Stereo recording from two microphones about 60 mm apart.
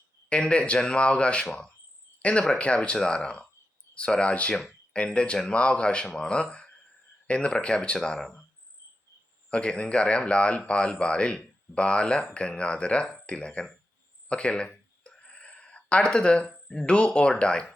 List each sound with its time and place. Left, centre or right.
0.3 s speech: centre
2.6 s speech: centre
9.5 s speech: centre
14.3 s a sound: centre
16.6 s speech: centre